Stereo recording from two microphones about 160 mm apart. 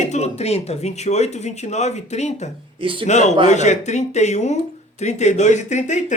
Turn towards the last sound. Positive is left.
turn(degrees=50)  # may be behind; listen again after turning